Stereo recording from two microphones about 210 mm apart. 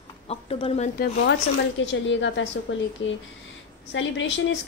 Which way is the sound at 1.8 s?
60° left (ahead or behind).